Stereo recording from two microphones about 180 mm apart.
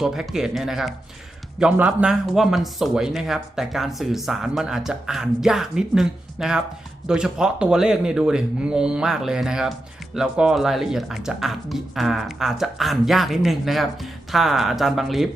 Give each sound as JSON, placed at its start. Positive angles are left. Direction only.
{"t": 0.0, "sound": "speech", "side_deg": 0}